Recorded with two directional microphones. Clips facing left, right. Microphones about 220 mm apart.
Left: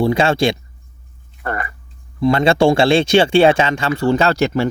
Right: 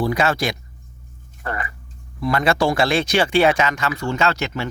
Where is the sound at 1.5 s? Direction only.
50° left (ahead or behind).